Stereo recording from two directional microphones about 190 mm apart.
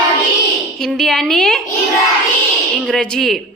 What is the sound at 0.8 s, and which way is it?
Speech, centre (ahead or behind).